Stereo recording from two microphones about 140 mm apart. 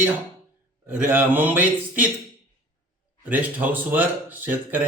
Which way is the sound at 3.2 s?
10° right (ahead or behind).